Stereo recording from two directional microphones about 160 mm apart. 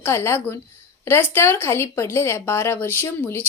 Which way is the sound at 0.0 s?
15° left (ahead or behind).